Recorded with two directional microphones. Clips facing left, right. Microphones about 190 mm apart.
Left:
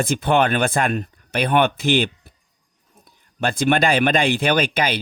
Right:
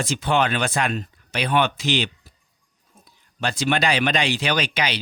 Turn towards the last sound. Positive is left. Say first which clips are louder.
# left 4 dB
turn(degrees=50)  # may be behind; listen again after turning